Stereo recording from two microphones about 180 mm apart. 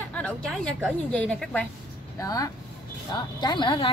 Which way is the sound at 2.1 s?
20° left (ahead or behind).